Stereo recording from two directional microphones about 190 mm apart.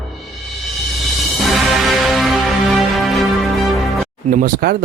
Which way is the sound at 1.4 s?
Centre (ahead or behind).